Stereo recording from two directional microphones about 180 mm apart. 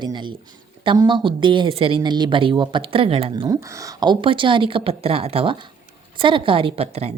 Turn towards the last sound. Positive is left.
turn(degrees=-35)  # may be behind; listen again after turning